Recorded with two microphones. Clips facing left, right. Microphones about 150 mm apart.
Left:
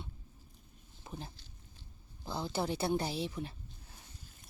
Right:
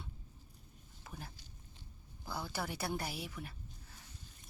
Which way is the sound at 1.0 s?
25° left (ahead or behind).